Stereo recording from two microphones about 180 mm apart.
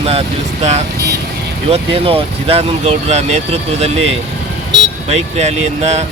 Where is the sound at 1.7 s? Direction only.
30° right (ahead or behind).